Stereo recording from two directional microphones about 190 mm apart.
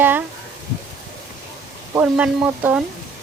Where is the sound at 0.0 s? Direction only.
10° right (ahead or behind).